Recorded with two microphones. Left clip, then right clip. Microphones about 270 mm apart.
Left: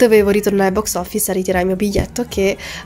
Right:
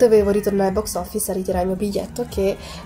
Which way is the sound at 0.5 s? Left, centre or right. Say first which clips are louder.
Left 4 dB; left.